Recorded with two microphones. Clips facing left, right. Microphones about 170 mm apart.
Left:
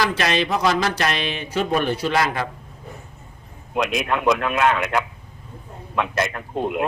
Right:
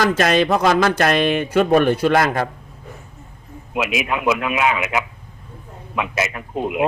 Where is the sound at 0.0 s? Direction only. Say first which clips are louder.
Right 5 dB; 45° right (ahead or behind).